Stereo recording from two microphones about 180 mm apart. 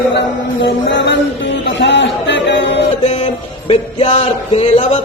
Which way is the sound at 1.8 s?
75° left (ahead or behind).